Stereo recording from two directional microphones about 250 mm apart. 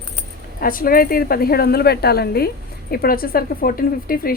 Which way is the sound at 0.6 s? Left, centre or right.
Left.